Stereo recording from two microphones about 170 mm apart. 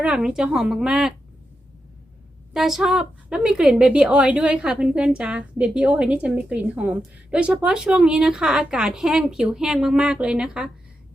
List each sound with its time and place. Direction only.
0.0 s a woman's voice: 5° right (ahead or behind)
2.5 s a woman's voice: centre (ahead or behind)